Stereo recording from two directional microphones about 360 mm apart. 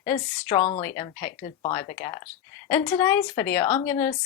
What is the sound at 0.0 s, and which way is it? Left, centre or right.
Speech, centre.